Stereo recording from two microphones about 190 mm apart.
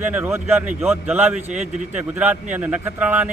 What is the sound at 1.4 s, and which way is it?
Speech, 35° right (ahead or behind).